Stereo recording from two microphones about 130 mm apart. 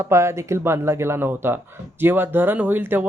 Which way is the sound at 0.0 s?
20° right (ahead or behind).